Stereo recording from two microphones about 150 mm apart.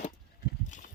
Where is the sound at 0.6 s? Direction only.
55° left (ahead or behind).